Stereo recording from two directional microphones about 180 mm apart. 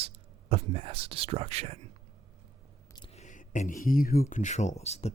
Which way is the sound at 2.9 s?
30° left (ahead or behind).